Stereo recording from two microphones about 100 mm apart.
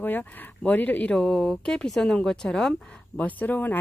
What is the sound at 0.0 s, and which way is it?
Speech, 20° left (ahead or behind).